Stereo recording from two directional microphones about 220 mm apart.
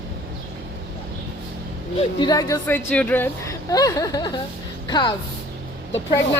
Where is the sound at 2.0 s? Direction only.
20° left (ahead or behind).